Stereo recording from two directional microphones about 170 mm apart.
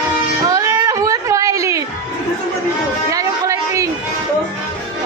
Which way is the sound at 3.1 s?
20° right (ahead or behind).